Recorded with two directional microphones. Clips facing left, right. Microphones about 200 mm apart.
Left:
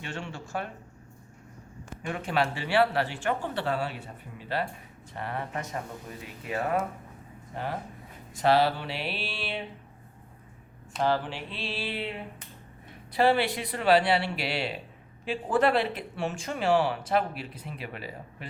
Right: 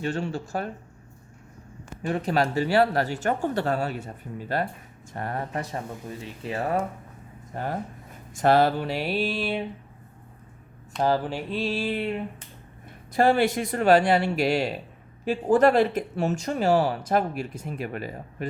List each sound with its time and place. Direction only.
0.0 s speech: 35° right (ahead or behind)
2.0 s speech: 35° right (ahead or behind)
7.5 s speech: 45° right (ahead or behind)
10.9 s speech: 40° right (ahead or behind)